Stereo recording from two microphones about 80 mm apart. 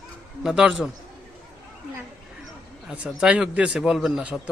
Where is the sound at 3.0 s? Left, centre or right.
Centre.